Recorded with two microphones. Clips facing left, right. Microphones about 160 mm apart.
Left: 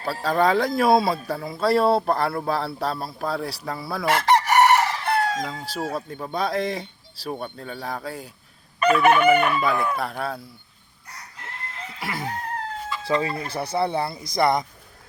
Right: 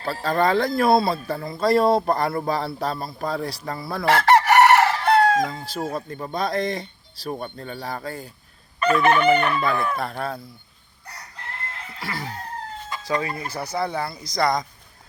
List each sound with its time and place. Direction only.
0.0 s chicken: 5° left (ahead or behind)
0.8 s speech: 10° left (ahead or behind)
4.3 s chicken: 65° right (ahead or behind)
5.7 s chicken: 5° left (ahead or behind)
6.1 s speech: 5° left (ahead or behind)
8.8 s chicken: 10° left (ahead or behind)
11.9 s chicken: 15° left (ahead or behind)
13.1 s speech: 25° left (ahead or behind)